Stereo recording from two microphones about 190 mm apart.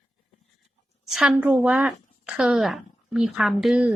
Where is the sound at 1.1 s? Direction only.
5° right (ahead or behind).